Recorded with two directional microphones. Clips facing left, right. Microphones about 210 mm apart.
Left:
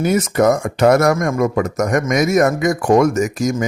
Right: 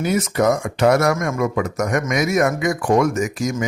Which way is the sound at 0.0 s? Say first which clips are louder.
Left 4 dB; 50° left (ahead or behind).